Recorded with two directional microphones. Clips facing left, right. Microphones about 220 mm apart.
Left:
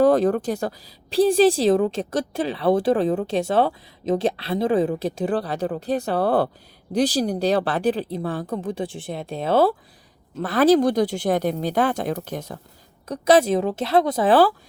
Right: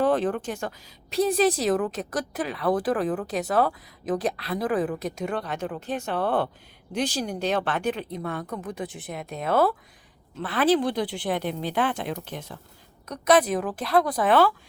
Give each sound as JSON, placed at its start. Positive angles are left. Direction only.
{"t": 0.0, "sound": "a woman's voice", "side_deg": 40}
{"t": 10.3, "sound": "speech", "side_deg": 40}
{"t": 13.1, "sound": "a woman's voice", "side_deg": 30}